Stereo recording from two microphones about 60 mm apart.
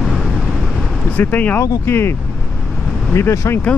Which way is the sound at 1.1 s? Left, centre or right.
Left.